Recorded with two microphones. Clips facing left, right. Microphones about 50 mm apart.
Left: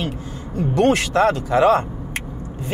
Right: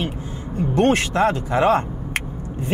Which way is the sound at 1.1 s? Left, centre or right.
Centre.